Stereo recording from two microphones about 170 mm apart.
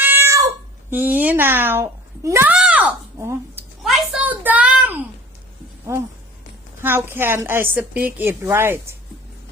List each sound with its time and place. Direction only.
0.0 s cat: 10° right (ahead or behind)
3.8 s a sound: 5° right (ahead or behind)
5.9 s a woman's voice: 15° right (ahead or behind)